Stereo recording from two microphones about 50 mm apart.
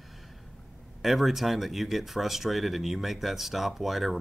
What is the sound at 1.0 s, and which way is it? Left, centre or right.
Speech, centre.